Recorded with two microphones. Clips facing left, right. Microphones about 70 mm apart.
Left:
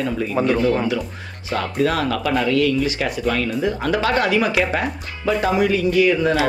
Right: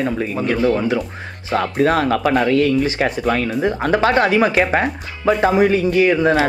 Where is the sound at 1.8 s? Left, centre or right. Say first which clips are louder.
Right 4 dB; right.